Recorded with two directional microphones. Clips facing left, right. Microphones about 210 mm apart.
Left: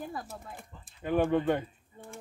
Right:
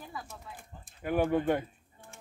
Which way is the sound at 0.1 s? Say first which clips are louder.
Left 4 dB; 45° left (ahead or behind).